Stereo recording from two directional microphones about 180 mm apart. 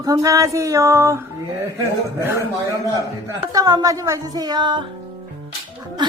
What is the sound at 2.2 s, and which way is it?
Speech, 10° right (ahead or behind).